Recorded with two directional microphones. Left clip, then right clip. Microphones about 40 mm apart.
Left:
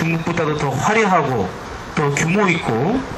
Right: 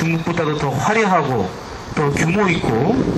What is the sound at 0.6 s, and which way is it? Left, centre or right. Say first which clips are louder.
Speech: left 1 dB; centre.